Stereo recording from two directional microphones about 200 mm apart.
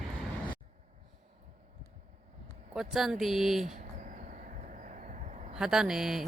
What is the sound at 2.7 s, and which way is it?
Speech, centre (ahead or behind).